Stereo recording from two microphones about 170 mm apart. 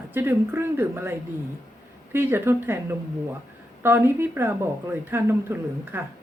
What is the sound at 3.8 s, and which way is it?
Speech, 15° right (ahead or behind).